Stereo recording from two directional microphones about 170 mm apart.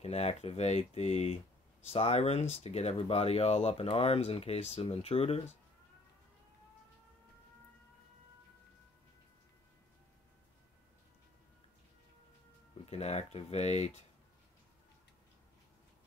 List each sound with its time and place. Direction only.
0.0 s speech: 40° left (ahead or behind)
12.8 s speech: 40° left (ahead or behind)